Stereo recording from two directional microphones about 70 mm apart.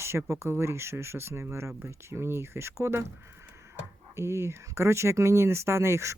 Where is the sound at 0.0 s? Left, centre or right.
Right.